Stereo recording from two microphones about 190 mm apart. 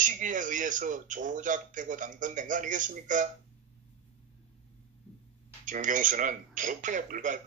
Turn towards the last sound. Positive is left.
turn(degrees=-45)  # may be behind; listen again after turning